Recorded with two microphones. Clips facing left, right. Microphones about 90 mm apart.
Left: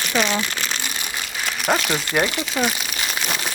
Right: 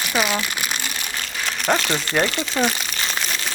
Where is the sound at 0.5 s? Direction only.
15° right (ahead or behind).